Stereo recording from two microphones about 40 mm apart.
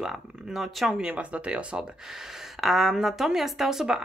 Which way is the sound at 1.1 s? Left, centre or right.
Right.